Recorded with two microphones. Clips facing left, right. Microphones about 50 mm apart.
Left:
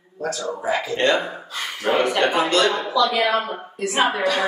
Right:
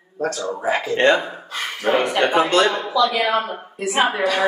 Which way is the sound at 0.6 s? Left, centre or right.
Right.